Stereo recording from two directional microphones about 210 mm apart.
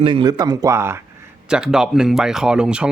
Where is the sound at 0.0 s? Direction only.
20° right (ahead or behind).